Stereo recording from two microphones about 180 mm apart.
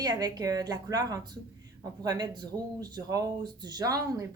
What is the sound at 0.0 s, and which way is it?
Speech, 20° right (ahead or behind).